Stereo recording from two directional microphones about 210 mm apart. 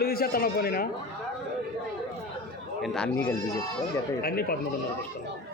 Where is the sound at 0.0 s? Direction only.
45° left (ahead or behind).